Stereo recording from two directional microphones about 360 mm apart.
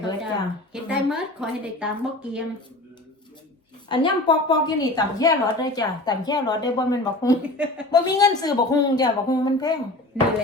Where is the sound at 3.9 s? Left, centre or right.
Centre.